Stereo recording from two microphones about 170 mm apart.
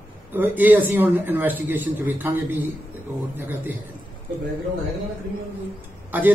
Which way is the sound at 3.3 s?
10° right (ahead or behind).